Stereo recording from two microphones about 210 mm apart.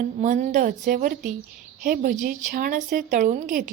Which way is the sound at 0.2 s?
35° right (ahead or behind).